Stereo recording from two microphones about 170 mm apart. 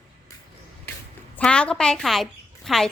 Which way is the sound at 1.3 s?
5° left (ahead or behind).